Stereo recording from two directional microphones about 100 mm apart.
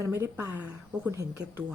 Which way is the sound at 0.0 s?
25° right (ahead or behind).